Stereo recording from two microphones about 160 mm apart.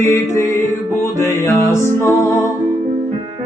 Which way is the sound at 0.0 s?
20° left (ahead or behind).